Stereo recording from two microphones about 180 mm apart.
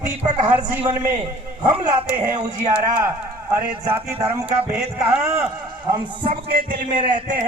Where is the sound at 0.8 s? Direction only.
25° right (ahead or behind).